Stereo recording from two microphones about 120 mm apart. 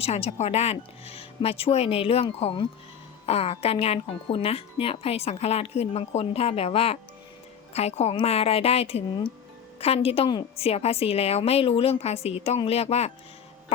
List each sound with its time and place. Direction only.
0.0 s speech: 60° left (ahead or behind)